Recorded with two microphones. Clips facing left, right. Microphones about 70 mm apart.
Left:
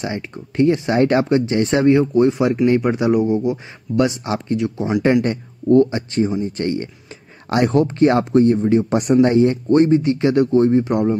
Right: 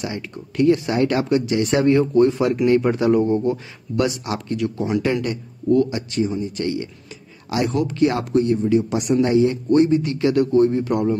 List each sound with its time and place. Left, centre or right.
0.0 s speech: left; by 3.3 s centre
3.9 s speech: left
5.2 s a man's voice: left